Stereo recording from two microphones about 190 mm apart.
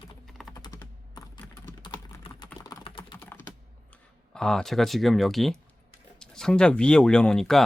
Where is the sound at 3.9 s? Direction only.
5° left (ahead or behind).